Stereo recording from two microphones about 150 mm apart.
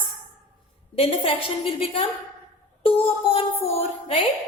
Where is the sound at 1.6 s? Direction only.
40° left (ahead or behind).